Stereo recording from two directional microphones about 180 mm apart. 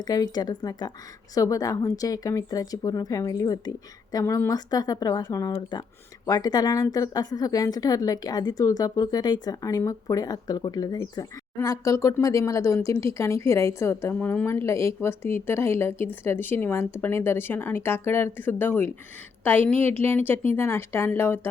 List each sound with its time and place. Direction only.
0.0 s a woman's voice: 20° left (ahead or behind)